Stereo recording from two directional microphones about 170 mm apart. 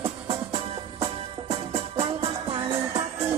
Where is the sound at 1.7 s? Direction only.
35° right (ahead or behind).